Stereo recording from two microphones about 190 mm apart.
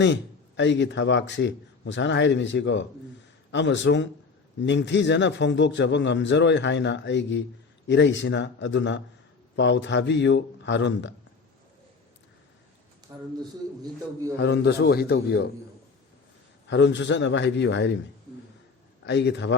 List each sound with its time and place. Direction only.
0.0 s speech: 70° left (ahead or behind)
13.1 s a man's voice: 15° right (ahead or behind)
14.3 s a man's voice: 65° left (ahead or behind)
16.6 s speech: 70° left (ahead or behind)
19.0 s speech: 65° left (ahead or behind)